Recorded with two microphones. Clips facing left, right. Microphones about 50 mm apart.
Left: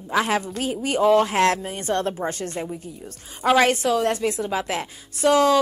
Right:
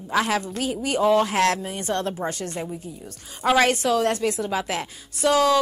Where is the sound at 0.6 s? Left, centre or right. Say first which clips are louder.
Left 2 dB; left.